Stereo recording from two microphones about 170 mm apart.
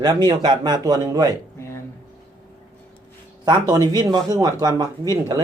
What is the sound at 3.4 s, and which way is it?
Speech, 25° right (ahead or behind).